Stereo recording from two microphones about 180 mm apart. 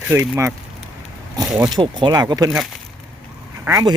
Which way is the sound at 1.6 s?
25° right (ahead or behind).